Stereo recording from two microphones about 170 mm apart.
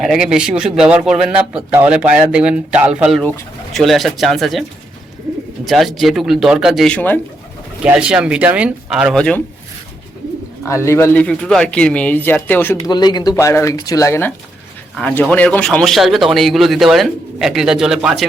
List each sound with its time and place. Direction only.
0.0 s a man's voice: centre (ahead or behind)
5.6 s a man's voice: centre (ahead or behind)
7.8 s a man's voice: 5° right (ahead or behind)
10.7 s speech: 15° left (ahead or behind)
12.9 s a man's voice: 25° left (ahead or behind); by 18.3 s 5° right (ahead or behind)